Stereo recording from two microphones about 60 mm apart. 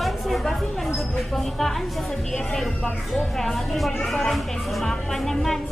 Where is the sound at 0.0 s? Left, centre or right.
Centre.